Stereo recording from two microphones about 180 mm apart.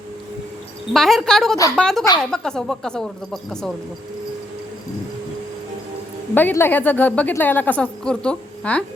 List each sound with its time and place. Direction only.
0.9 s a woman's voice: centre (ahead or behind)
6.3 s a woman's voice: 10° left (ahead or behind)